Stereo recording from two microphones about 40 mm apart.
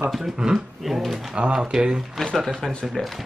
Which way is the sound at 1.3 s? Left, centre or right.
Right.